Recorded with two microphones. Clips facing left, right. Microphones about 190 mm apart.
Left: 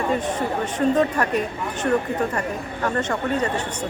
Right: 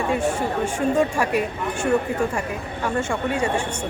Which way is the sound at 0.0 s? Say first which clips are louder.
Right 1 dB; 10° right (ahead or behind).